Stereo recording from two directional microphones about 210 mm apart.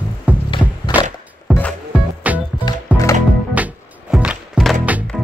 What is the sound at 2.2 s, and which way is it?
Music, 5° right (ahead or behind).